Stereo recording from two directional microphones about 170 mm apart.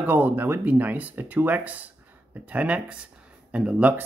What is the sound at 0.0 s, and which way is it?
Speech, 10° right (ahead or behind).